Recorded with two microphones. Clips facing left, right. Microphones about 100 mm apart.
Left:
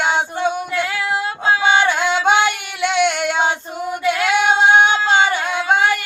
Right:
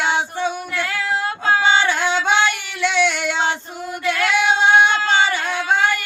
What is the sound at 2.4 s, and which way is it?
Female singing, 15° left (ahead or behind).